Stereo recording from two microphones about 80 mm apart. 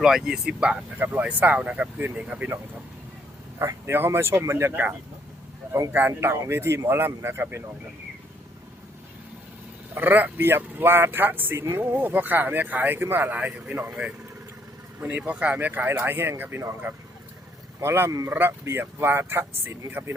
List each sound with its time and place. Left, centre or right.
0.0 s speech: centre
0.9 s speech: right
3.6 s speech: right
4.7 s speech: centre
9.9 s speech: right
15.0 s speech: centre